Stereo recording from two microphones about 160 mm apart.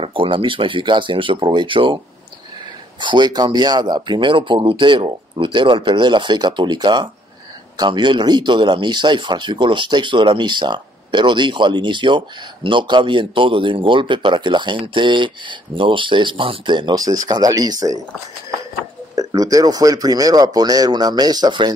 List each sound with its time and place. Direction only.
0.0 s speech: 30° right (ahead or behind)
3.0 s speech: 30° right (ahead or behind)
19.1 s speech: 20° right (ahead or behind)